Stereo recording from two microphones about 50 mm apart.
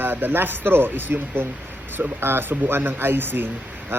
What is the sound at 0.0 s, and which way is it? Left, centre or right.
Speech, right.